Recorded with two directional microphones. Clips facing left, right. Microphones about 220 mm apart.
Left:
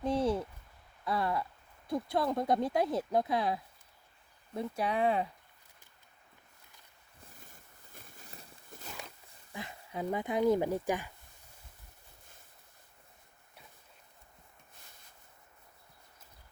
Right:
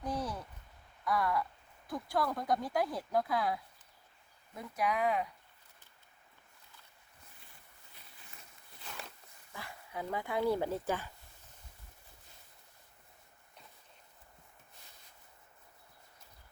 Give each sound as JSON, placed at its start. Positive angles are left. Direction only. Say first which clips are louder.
{"t": 0.0, "sound": "a sound", "louder": "left 8 dB", "side_deg": 25}
{"t": 1.9, "sound": "speech", "louder": "left 3 dB", "side_deg": 25}
{"t": 7.3, "sound": "boat", "louder": "left 5 dB", "side_deg": 45}
{"t": 9.5, "sound": "speech", "louder": "left 4 dB", "side_deg": 20}